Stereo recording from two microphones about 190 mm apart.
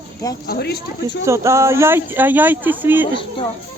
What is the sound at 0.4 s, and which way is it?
Speech, 55° left (ahead or behind).